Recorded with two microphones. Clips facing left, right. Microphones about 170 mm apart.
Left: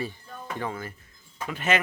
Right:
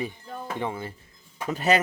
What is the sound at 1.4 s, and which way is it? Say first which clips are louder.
Speech: right 4 dB; 40° right (ahead or behind).